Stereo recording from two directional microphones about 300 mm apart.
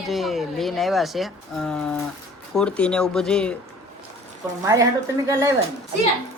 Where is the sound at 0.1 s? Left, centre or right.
Centre.